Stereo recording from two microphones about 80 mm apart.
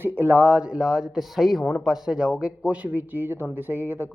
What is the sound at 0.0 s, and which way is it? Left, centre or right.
Speech, right.